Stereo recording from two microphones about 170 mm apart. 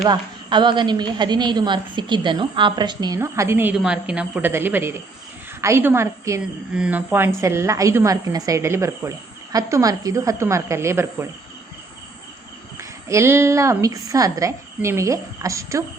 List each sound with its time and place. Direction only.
0.0 s a woman's voice: 25° right (ahead or behind)
3.2 s a woman's voice: 15° right (ahead or behind)
6.4 s a woman's voice: 5° right (ahead or behind)
13.1 s a woman's voice: 15° right (ahead or behind)